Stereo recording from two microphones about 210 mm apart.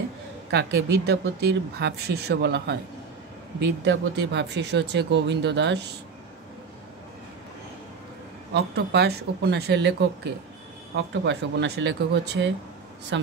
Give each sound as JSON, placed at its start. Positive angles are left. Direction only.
{"t": 0.5, "sound": "speech", "side_deg": -55}
{"t": 3.8, "sound": "speech", "side_deg": -55}
{"t": 8.5, "sound": "speech", "side_deg": -50}